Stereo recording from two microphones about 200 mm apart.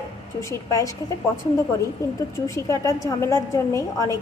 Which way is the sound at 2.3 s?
15° left (ahead or behind).